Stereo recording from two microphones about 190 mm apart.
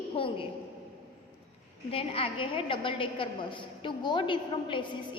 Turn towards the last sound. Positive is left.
turn(degrees=25)  # may be behind; listen again after turning